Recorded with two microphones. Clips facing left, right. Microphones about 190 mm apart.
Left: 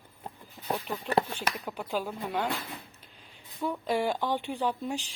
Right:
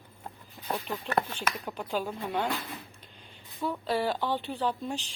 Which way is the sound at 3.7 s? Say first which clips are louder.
Left 1 dB; 15° left (ahead or behind).